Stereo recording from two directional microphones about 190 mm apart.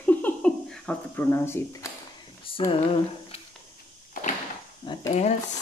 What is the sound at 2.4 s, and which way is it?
Speech, 30° left (ahead or behind).